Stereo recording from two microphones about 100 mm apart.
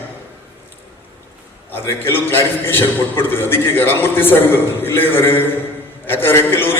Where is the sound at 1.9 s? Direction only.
25° left (ahead or behind).